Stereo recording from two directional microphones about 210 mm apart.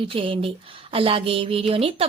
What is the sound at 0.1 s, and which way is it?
A woman's voice, 25° right (ahead or behind).